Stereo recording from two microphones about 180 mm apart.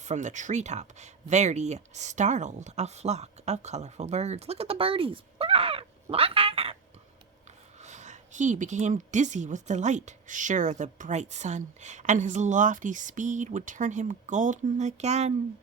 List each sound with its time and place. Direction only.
0.0 s speech: 40° right (ahead or behind)
7.8 s speech: 40° right (ahead or behind)